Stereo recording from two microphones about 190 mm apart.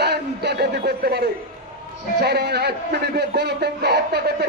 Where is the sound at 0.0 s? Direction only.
60° right (ahead or behind).